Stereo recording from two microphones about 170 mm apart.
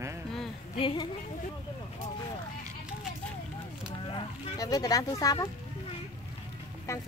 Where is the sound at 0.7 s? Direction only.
30° left (ahead or behind).